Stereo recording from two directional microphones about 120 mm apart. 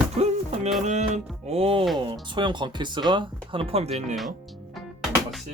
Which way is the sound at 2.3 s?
40° right (ahead or behind).